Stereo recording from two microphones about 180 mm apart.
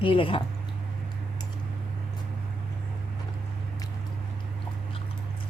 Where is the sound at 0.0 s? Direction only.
30° left (ahead or behind).